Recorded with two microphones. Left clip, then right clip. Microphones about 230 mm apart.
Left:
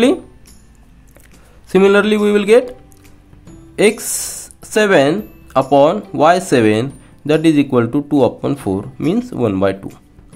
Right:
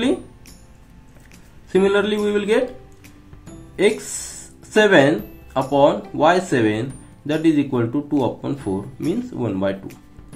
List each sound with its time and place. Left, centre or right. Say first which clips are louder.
1.7 s speech: left 6 dB; left
3.7 s speech: left 5 dB; left